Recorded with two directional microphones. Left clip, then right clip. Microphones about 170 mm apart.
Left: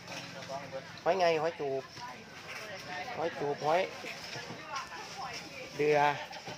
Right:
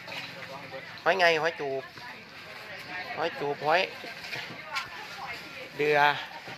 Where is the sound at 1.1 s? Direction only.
Centre (ahead or behind).